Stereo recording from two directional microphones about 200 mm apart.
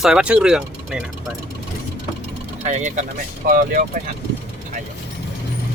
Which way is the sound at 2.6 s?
35° right (ahead or behind).